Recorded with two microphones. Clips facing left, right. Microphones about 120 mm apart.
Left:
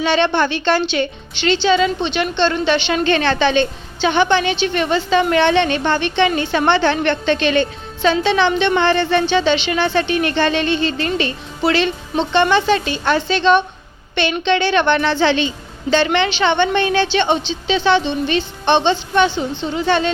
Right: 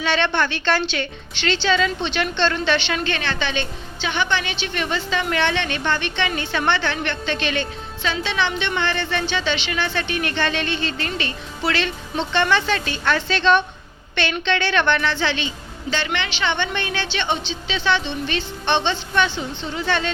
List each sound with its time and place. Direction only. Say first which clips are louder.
0.0 s a woman's voice: left 5 dB; 25° left (ahead or behind)
3.0 s a woman's voice: left 9 dB; 40° left (ahead or behind)